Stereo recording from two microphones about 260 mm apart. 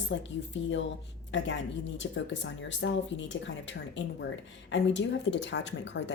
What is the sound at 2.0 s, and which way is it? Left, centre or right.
Speech, left.